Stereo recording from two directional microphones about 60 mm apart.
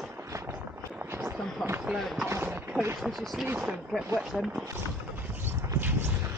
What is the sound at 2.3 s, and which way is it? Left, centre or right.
Clip-clop, right.